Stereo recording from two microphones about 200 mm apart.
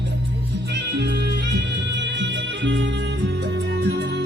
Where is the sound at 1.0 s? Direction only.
55° right (ahead or behind).